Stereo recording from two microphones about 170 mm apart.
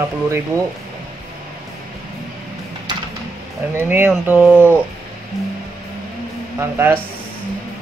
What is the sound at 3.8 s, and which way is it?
Speech, 10° right (ahead or behind).